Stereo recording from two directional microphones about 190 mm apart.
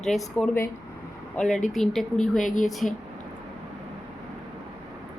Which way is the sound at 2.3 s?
45° left (ahead or behind).